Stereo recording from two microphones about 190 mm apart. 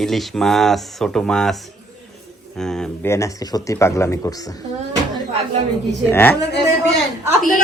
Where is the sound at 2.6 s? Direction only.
5° left (ahead or behind).